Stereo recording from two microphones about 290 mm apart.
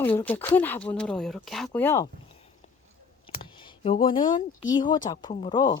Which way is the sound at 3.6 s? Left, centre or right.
Centre.